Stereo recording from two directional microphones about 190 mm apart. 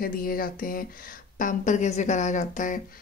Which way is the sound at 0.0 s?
50° left (ahead or behind).